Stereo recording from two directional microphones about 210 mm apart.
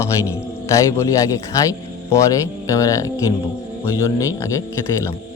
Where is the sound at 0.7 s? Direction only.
15° left (ahead or behind).